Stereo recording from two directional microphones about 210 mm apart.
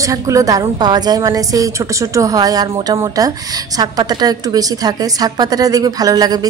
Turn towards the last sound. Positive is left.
turn(degrees=-20)  # may be behind; listen again after turning